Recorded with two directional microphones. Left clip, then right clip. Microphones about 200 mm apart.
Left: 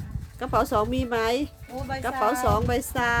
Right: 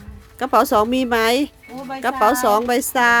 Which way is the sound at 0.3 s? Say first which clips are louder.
Right 8 dB; 25° right (ahead or behind).